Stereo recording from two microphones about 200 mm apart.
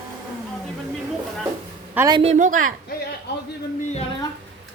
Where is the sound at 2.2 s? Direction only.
35° right (ahead or behind).